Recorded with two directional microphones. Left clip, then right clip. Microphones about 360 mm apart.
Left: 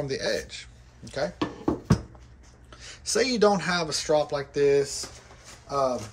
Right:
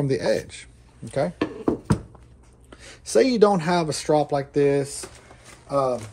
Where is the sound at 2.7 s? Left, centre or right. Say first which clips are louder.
Right 7 dB; centre.